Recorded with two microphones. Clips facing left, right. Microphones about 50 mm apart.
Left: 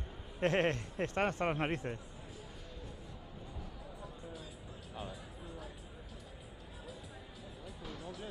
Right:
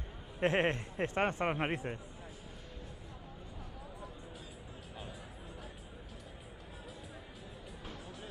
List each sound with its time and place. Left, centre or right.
0.4 s speech: right
7.9 s music: centre